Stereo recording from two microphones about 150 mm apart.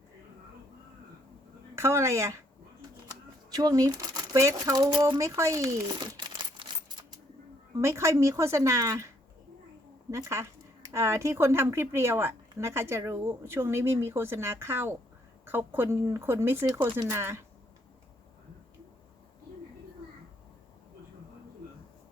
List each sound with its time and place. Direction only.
1.7 s speech: 20° right (ahead or behind)
3.5 s speech: 25° right (ahead or behind)
7.8 s speech: 20° right (ahead or behind)
10.1 s speech: 20° right (ahead or behind)